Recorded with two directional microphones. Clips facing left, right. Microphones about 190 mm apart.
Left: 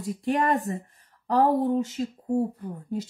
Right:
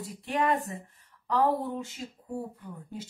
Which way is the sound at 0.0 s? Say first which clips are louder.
Left 4 dB; 45° left (ahead or behind).